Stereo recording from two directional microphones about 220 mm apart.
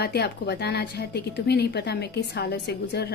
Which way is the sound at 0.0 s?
50° left (ahead or behind).